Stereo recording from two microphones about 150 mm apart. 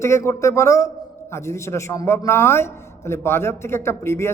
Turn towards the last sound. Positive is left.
turn(degrees=15)  # may be behind; listen again after turning